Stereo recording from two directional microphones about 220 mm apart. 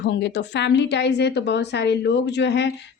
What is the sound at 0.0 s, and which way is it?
A woman's voice, 50° left (ahead or behind).